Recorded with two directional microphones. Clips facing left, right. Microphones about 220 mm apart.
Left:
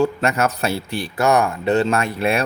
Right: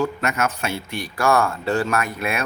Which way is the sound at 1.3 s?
20° left (ahead or behind).